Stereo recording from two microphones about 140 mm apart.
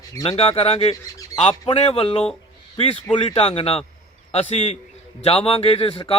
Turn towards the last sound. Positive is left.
turn(degrees=45)  # may be behind; listen again after turning